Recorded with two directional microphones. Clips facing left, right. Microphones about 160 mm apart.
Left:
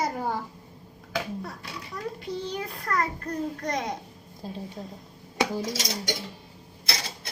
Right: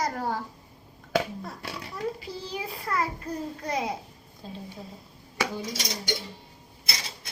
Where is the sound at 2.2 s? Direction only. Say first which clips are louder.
Left 3 dB; 5° right (ahead or behind).